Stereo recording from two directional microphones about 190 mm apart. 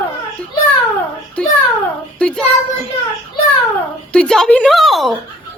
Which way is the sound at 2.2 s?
5° left (ahead or behind).